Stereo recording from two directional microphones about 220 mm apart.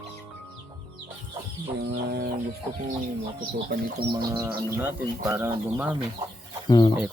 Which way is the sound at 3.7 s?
40° right (ahead or behind).